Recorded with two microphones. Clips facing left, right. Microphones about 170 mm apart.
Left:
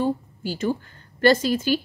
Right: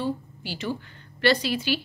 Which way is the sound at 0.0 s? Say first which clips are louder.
Left 5 dB; 45° left (ahead or behind).